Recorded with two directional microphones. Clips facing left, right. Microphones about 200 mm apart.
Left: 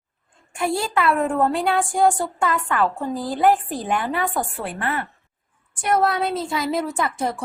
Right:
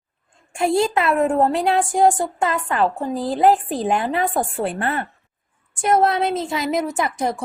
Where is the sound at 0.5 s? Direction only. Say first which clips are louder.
Right 4 dB; 25° right (ahead or behind).